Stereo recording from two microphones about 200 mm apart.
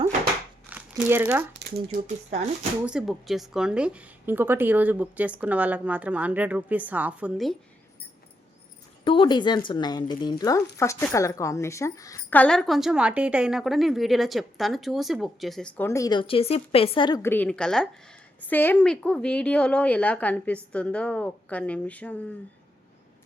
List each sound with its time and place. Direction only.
0.7 s crumpling: 10° right (ahead or behind)
1.5 s speech: 40° right (ahead or behind)
2.8 s a woman's voice: centre (ahead or behind)
9.0 s speech: 25° left (ahead or behind)
17.2 s a woman's voice: 10° left (ahead or behind)